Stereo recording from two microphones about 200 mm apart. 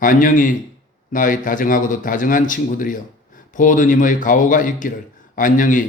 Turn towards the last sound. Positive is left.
turn(degrees=40)  # may be behind; listen again after turning